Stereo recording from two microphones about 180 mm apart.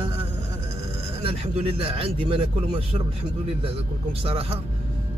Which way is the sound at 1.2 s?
30° right (ahead or behind).